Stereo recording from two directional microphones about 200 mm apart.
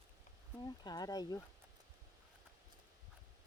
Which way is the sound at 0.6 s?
20° left (ahead or behind).